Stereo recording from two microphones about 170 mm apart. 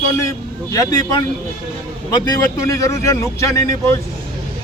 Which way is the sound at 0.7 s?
20° left (ahead or behind).